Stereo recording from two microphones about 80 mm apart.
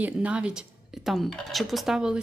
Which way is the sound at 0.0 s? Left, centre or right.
Centre.